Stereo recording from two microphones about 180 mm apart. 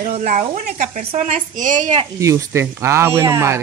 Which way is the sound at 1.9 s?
20° right (ahead or behind).